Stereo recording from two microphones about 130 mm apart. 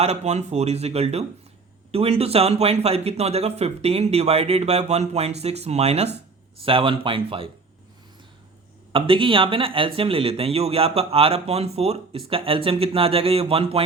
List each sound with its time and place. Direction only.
0.0 s speech: 60° right (ahead or behind)
6.6 s speech: 45° right (ahead or behind)
8.9 s speech: 45° right (ahead or behind)